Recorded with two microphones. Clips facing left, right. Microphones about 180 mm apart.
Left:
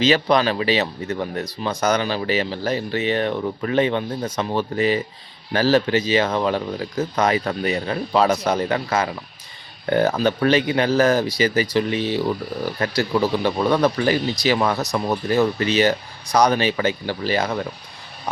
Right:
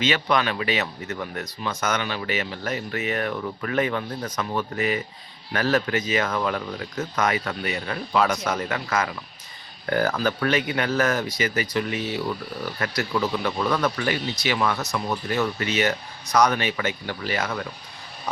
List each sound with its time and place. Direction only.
0.0 s speech: 35° left (ahead or behind)